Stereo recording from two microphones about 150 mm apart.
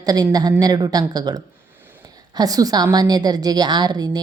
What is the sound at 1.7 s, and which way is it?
A woman's voice, 15° right (ahead or behind).